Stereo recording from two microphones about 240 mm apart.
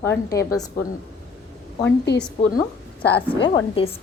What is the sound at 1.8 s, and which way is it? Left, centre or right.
Speech, left.